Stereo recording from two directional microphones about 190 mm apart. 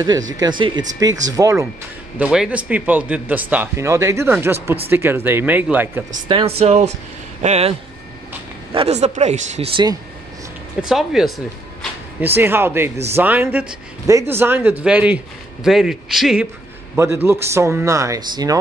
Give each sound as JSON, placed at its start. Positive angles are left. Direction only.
{"t": 0.3, "sound": "speech", "side_deg": -20}
{"t": 2.1, "sound": "speech", "side_deg": -5}
{"t": 6.2, "sound": "speech", "side_deg": -30}
{"t": 8.7, "sound": "speech", "side_deg": -35}
{"t": 10.8, "sound": "a man's voice", "side_deg": 0}
{"t": 12.4, "sound": "a man's voice", "side_deg": -10}
{"t": 16.9, "sound": "speech", "side_deg": -15}